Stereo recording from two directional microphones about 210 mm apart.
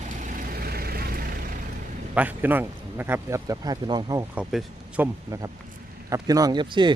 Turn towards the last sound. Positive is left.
turn(degrees=-20)  # may be behind; listen again after turning